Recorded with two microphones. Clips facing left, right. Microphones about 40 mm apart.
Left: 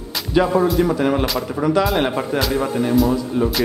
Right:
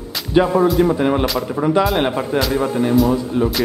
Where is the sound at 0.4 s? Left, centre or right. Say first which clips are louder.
Right 2 dB; centre.